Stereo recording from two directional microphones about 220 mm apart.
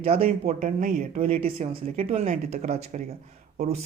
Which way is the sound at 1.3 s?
25° right (ahead or behind).